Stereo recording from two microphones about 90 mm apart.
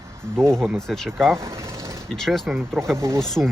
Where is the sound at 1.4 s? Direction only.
35° right (ahead or behind).